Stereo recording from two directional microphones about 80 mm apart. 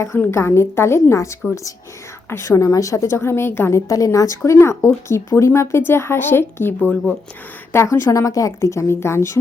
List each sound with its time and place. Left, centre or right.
0.3 s speech: left
3.8 s speech: left
7.7 s speech: left